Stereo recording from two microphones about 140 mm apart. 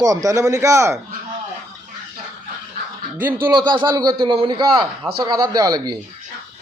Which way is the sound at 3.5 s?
30° right (ahead or behind).